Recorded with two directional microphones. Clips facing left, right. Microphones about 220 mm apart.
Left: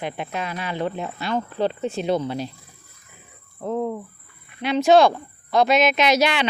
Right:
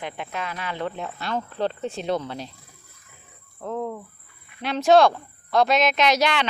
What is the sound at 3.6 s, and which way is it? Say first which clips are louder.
Speech: left 4 dB; 10° left (ahead or behind).